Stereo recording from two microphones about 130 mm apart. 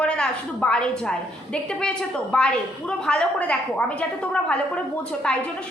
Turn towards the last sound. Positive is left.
turn(degrees=10)  # may be behind; listen again after turning